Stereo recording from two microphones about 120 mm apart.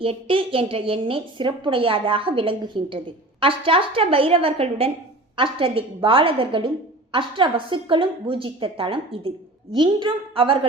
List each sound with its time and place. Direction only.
0.0 s a woman's voice: 50° right (ahead or behind)